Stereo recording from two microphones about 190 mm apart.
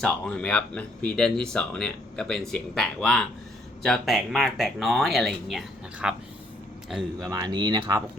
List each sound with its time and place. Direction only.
0.0 s speech: 5° left (ahead or behind)
7.3 s speech: 20° right (ahead or behind)